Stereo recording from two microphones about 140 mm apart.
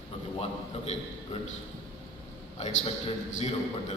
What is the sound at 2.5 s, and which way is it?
A man's voice, 50° left (ahead or behind).